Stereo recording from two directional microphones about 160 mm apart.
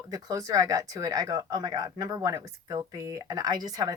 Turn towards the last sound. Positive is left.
turn(degrees=-25)  # may be behind; listen again after turning